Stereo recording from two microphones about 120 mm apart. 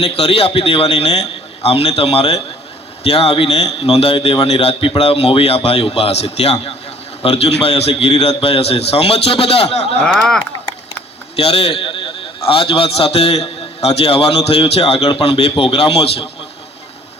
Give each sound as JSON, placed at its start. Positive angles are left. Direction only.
{"t": 0.0, "sound": "a man's voice", "side_deg": 55}
{"t": 10.1, "sound": "speech", "side_deg": 5}
{"t": 11.3, "sound": "a man's voice", "side_deg": 55}